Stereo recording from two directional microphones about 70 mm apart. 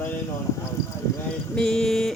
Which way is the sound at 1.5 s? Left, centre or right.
Centre.